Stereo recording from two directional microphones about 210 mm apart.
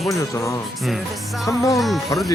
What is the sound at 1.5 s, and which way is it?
Speech, 15° left (ahead or behind).